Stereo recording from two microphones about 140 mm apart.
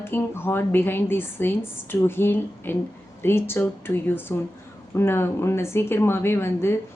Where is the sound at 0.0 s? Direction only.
15° left (ahead or behind).